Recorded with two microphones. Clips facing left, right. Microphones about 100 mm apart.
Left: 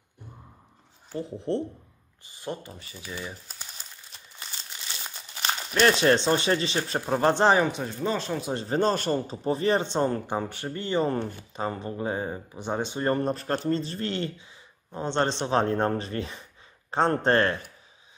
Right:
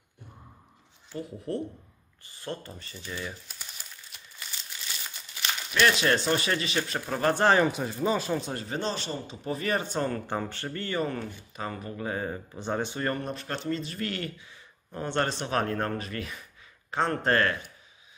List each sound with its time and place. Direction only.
1.1 s speech: 25° left (ahead or behind)
2.2 s a sound: 15° left (ahead or behind)
2.7 s speech: 5° left (ahead or behind)
4.1 s crumpling: 25° left (ahead or behind)
5.0 s speech: 35° left (ahead or behind)
7.5 s speech: centre (ahead or behind)
8.5 s a man's voice: 40° left (ahead or behind)
9.4 s speech: 30° left (ahead or behind)
11.1 s speech: 30° left (ahead or behind)
13.1 s speech: 35° left (ahead or behind)